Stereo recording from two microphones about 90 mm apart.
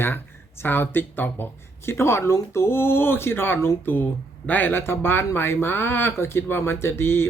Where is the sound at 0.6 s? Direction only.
25° left (ahead or behind).